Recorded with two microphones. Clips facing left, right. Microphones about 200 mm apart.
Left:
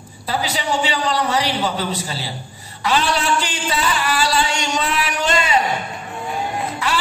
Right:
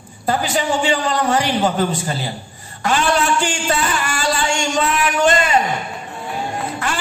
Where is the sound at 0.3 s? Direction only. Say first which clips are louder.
Right 3 dB; 50° right (ahead or behind).